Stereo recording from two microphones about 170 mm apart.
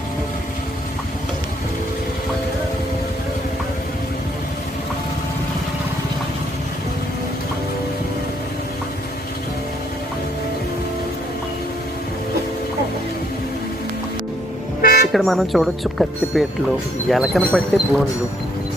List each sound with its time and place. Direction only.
14.8 s toot: 60° left (ahead or behind)
15.1 s speech: centre (ahead or behind)